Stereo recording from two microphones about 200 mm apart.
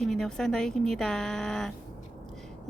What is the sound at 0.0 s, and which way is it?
Speech, 5° left (ahead or behind).